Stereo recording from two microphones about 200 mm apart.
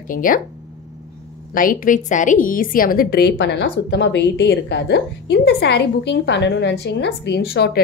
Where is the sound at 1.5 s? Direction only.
45° left (ahead or behind).